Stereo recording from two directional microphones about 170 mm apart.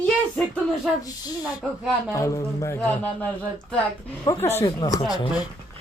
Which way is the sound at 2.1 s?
20° left (ahead or behind).